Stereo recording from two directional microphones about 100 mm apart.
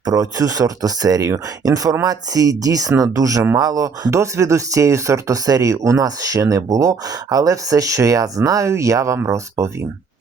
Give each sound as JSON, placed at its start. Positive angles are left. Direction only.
{"t": 0.0, "sound": "speech", "side_deg": -35}